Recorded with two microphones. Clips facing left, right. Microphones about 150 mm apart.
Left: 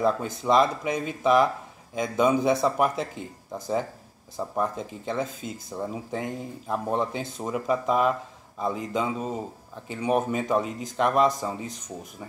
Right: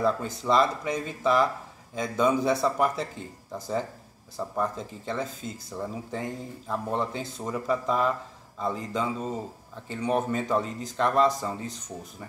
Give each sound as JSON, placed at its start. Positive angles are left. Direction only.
{"t": 0.0, "sound": "speech", "side_deg": 15}